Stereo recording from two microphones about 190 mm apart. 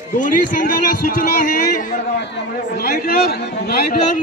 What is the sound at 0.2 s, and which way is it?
A man's voice, 45° left (ahead or behind).